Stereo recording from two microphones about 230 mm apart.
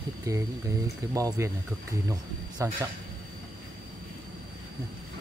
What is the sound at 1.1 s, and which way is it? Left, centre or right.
Speech, centre.